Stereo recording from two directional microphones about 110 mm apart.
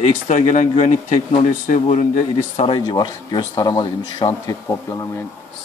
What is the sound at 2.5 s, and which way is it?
Speech, 55° left (ahead or behind).